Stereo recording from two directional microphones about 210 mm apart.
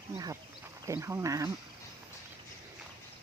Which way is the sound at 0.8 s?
15° right (ahead or behind).